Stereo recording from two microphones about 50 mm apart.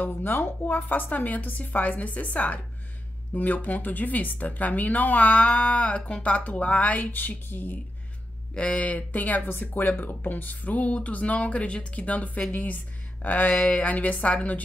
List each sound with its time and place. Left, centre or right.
0.0 s speech: left
8.5 s speech: left
9.8 s speech: left
13.6 s speech: centre
13.8 s speech: left